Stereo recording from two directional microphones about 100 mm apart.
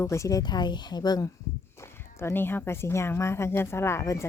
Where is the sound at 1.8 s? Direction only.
25° left (ahead or behind).